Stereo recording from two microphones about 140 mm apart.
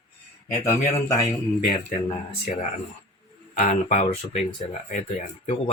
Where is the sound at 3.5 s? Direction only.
65° left (ahead or behind).